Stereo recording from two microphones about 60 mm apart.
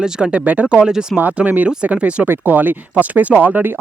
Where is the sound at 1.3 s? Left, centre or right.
Right.